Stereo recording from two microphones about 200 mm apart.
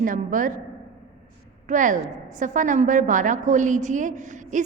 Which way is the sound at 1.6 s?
40° right (ahead or behind).